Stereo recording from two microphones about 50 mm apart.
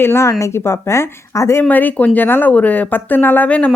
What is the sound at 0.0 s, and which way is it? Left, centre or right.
A woman's voice, left.